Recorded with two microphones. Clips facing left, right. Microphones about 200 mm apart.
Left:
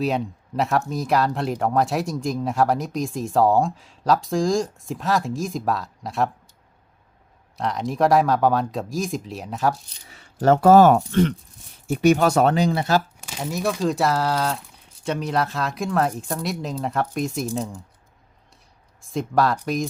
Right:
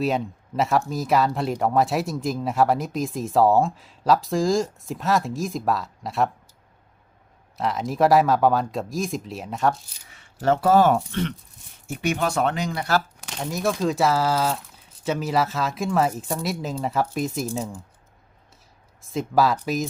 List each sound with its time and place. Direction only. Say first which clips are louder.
0.0 s speech: even; centre (ahead or behind)
7.5 s speech: even; centre (ahead or behind)
10.4 s speech: left 5 dB; 45° left (ahead or behind); by 13.0 s 25° left (ahead or behind)
13.2 s speech: even; 5° left (ahead or behind)
19.0 s speech: even; centre (ahead or behind)